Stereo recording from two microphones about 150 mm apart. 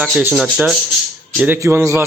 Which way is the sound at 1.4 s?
15° right (ahead or behind).